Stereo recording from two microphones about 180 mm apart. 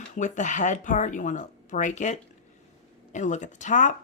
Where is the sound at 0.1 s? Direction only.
45° left (ahead or behind).